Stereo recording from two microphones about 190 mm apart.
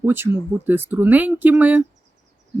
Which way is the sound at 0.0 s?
10° right (ahead or behind).